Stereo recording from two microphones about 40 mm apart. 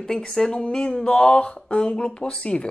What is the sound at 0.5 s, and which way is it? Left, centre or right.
A man's voice, left.